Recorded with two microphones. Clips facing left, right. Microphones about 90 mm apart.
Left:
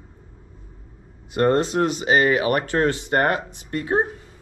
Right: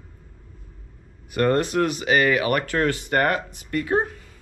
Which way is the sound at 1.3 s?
25° left (ahead or behind).